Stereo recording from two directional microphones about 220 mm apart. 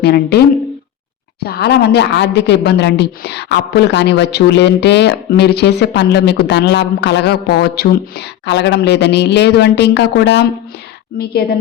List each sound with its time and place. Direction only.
0.0 s a woman's voice: 45° left (ahead or behind)